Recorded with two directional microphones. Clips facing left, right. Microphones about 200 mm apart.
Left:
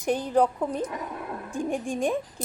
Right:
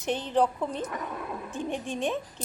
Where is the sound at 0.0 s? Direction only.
10° left (ahead or behind).